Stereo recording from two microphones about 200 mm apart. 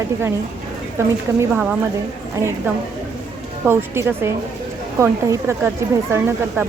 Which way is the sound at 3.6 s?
10° right (ahead or behind).